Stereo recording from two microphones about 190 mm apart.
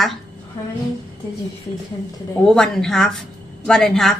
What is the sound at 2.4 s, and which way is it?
A woman's voice, 5° left (ahead or behind).